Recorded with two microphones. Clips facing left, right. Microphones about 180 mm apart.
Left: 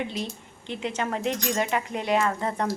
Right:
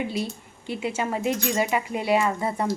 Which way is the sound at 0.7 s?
5° right (ahead or behind).